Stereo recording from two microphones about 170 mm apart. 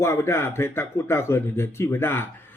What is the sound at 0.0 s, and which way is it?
Speech, 15° left (ahead or behind).